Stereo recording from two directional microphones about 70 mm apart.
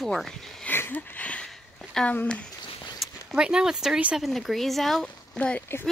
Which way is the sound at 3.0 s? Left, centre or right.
Centre.